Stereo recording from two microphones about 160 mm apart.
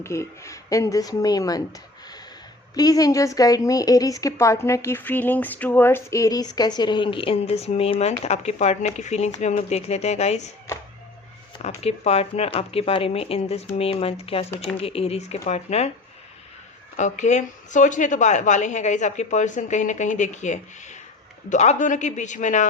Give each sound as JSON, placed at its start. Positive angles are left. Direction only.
{"t": 0.0, "sound": "speech", "side_deg": 15}
{"t": 2.7, "sound": "a woman's voice", "side_deg": 25}
{"t": 11.6, "sound": "a woman's voice", "side_deg": 40}
{"t": 17.0, "sound": "a woman's voice", "side_deg": 50}